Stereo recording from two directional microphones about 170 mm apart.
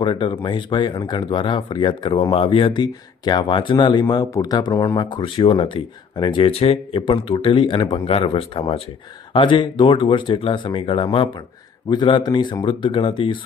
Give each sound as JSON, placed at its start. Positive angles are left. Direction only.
{"t": 0.0, "sound": "speech", "side_deg": 30}